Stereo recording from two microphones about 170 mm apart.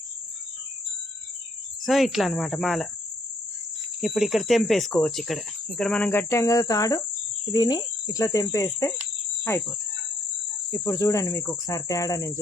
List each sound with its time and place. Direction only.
1.9 s speech: centre (ahead or behind)
4.0 s speech: centre (ahead or behind); by 7.0 s 20° left (ahead or behind)
7.5 s cricket: 25° left (ahead or behind)
9.5 s insect: 15° left (ahead or behind)
10.7 s cricket: 15° left (ahead or behind)